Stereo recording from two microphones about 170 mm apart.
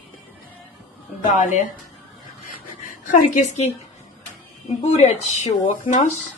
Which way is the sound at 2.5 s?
55° left (ahead or behind).